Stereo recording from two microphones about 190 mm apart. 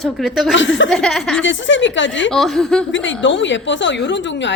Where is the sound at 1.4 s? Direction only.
80° left.